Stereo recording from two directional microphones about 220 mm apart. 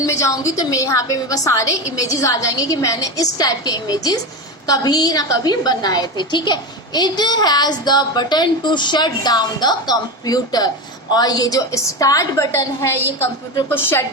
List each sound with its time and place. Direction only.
0.0 s a woman's voice: 15° left (ahead or behind)